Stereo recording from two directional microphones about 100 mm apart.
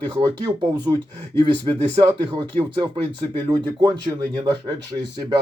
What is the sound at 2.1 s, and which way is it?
Speech, 45° right (ahead or behind).